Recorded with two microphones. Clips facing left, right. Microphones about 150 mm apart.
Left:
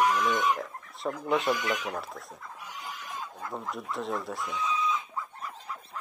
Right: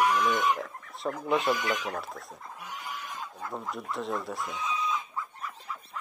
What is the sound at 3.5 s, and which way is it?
Speech, centre (ahead or behind).